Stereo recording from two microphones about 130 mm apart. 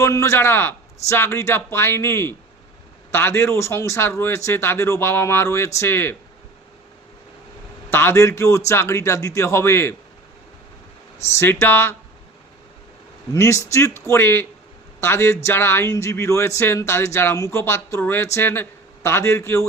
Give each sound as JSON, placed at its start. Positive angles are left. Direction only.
{"t": 0.0, "sound": "speech", "side_deg": 25}
{"t": 7.9, "sound": "speech", "side_deg": 20}
{"t": 11.2, "sound": "speech", "side_deg": 20}
{"t": 13.3, "sound": "speech", "side_deg": 20}